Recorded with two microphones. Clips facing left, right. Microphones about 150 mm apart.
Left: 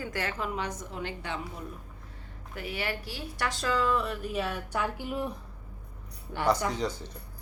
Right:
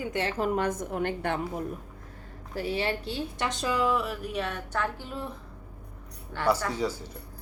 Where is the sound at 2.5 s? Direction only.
30° right (ahead or behind); by 6.5 s 15° left (ahead or behind).